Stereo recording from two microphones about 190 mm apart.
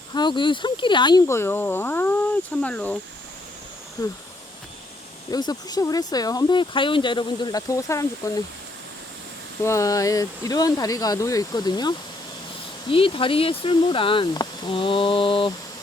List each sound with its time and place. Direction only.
0.1 s speech: 25° left (ahead or behind); by 3.0 s 5° left (ahead or behind)
4.0 s speech: 20° left (ahead or behind)
5.3 s speech: 20° left (ahead or behind)
9.6 s speech: 15° left (ahead or behind)